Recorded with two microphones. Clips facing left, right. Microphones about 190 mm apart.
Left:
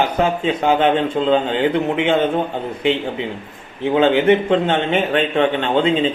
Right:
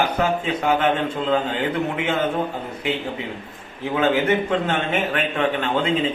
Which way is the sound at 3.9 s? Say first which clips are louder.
Left 5 dB; 25° left (ahead or behind).